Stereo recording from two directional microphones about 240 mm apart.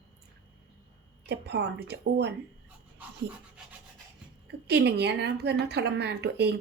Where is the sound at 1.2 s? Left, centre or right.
Right.